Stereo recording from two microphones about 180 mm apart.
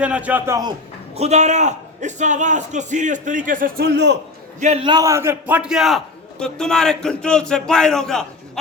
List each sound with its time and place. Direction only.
0.0 s a man's voice: 5° right (ahead or behind)
1.1 s a man's voice: 35° right (ahead or behind); by 4.2 s 70° right (ahead or behind)
4.6 s a man's voice: 35° right (ahead or behind)
4.9 s a man's voice: 20° right (ahead or behind); by 8.3 s 5° left (ahead or behind)